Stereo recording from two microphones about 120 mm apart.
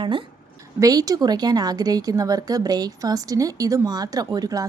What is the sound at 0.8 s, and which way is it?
A woman's voice, 30° right (ahead or behind).